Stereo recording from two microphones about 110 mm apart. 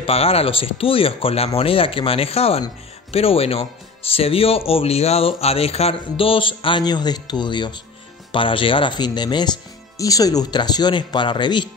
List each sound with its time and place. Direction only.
0.0 s speech: 60° left (ahead or behind); by 11.7 s 45° left (ahead or behind)